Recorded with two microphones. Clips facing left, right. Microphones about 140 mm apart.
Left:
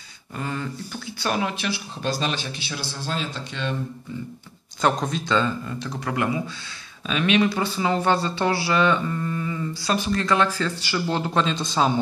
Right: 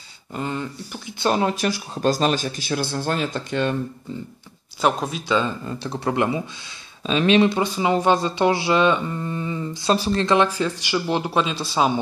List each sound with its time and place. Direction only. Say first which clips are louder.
0.4 s speech: right 2 dB; 20° right (ahead or behind)
1.5 s speech: right 5 dB; 40° right (ahead or behind)
4.8 s speech: right 1 dB; 5° right (ahead or behind)
5.7 s speech: right 4 dB; 30° right (ahead or behind); by 11.9 s 5° right (ahead or behind)